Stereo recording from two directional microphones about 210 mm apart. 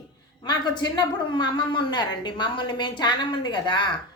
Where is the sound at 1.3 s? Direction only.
20° left (ahead or behind).